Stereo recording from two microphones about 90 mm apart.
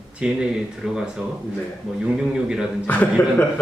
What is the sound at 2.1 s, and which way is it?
Speech, 5° right (ahead or behind).